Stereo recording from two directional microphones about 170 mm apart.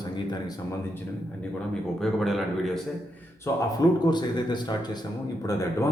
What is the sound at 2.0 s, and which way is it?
Speech, centre (ahead or behind).